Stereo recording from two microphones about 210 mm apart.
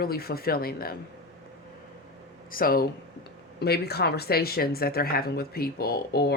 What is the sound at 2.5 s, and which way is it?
Speech, 45° left (ahead or behind).